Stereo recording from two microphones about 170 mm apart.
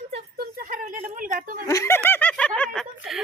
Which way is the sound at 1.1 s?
50° right (ahead or behind).